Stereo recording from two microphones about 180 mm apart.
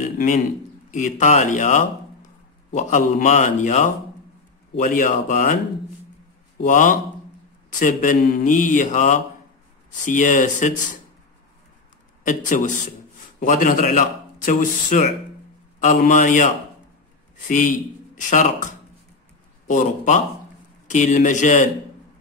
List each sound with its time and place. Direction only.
0.9 s a man's voice: 45° left (ahead or behind)
6.6 s a man's voice: 45° left (ahead or behind)
12.2 s a man's voice: 45° left (ahead or behind)